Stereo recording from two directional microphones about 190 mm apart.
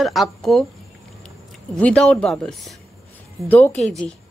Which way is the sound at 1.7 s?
5° left (ahead or behind).